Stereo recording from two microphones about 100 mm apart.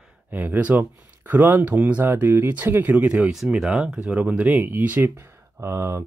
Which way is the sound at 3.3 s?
5° right (ahead or behind).